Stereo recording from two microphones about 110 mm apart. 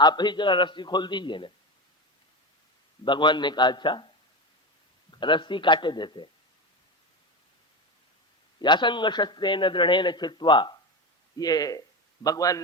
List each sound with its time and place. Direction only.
0.0 s a man's voice: 40° left (ahead or behind)
3.0 s a man's voice: 45° left (ahead or behind)
5.2 s a man's voice: 45° left (ahead or behind)
8.5 s a man's voice: 45° left (ahead or behind)